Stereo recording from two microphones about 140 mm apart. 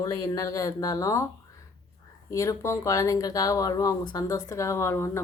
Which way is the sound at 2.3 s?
20° left (ahead or behind).